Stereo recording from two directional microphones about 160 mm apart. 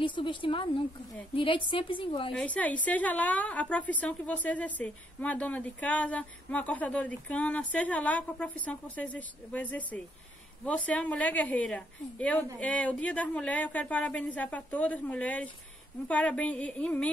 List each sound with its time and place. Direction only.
0.0 s a woman's voice: 30° left (ahead or behind)
2.3 s a woman's voice: 10° left (ahead or behind)